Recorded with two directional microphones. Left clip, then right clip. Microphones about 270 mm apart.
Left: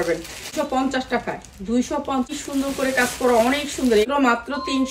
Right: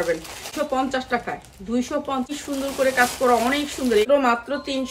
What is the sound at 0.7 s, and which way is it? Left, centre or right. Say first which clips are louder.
Speech: even; centre.